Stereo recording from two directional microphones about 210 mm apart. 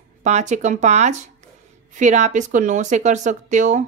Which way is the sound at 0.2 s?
35° right (ahead or behind).